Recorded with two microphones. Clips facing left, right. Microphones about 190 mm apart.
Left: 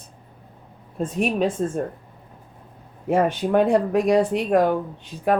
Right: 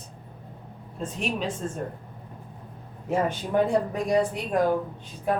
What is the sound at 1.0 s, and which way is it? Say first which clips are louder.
Speech: left 7 dB; 55° left (ahead or behind).